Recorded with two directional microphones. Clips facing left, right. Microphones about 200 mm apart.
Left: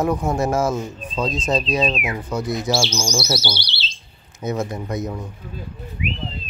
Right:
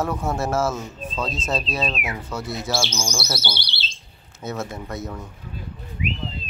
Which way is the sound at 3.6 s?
55° right (ahead or behind).